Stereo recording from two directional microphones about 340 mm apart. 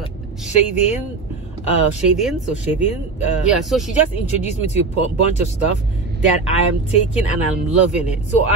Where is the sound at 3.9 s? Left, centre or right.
Centre.